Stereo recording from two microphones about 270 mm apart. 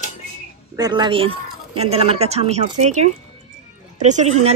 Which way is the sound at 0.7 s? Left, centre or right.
Centre.